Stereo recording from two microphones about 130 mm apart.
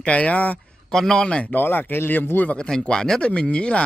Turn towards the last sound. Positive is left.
turn(degrees=10)  # may be behind; listen again after turning